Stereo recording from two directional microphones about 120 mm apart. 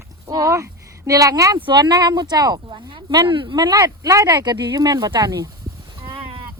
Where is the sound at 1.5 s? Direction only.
40° right (ahead or behind).